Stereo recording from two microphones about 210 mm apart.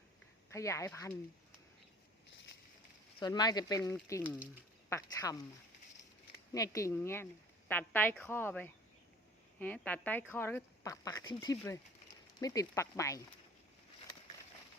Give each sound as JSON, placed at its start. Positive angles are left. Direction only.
{"t": 0.5, "sound": "speech", "side_deg": 15}
{"t": 2.2, "sound": "a sound", "side_deg": 55}
{"t": 3.2, "sound": "speech", "side_deg": 20}
{"t": 6.5, "sound": "speech", "side_deg": 15}